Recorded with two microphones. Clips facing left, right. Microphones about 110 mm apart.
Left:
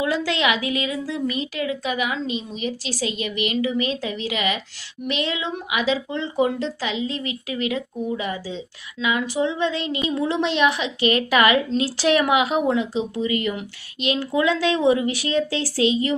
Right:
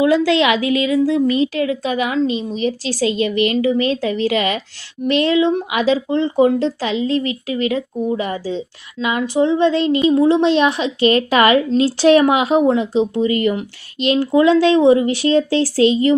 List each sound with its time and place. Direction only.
0.6 s speech: 25° left (ahead or behind)
1.0 s a woman's voice: 30° right (ahead or behind)